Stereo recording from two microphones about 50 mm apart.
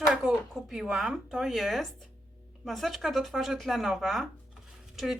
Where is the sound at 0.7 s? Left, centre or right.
Centre.